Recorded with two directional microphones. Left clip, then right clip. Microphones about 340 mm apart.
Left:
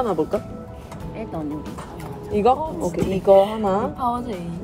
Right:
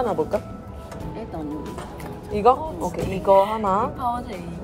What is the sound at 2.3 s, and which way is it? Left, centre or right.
A woman's voice, centre.